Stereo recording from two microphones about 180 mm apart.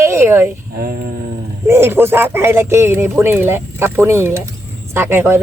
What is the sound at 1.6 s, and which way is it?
Speech, 15° right (ahead or behind).